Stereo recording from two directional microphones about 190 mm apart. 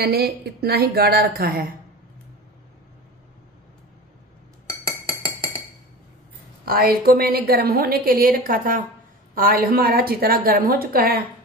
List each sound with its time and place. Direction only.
0.0 s a woman's voice: 55° right (ahead or behind)
6.6 s a woman's voice: 50° right (ahead or behind)